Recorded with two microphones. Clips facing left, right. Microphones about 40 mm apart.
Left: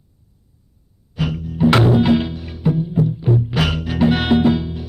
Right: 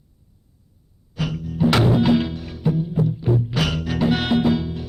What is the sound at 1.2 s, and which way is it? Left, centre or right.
Music, centre.